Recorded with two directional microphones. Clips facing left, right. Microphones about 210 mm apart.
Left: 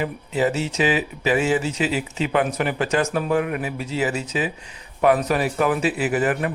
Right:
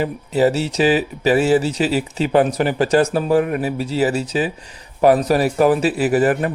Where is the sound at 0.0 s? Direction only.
35° right (ahead or behind).